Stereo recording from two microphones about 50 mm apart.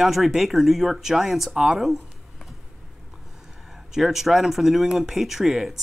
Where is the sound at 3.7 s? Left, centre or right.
Centre.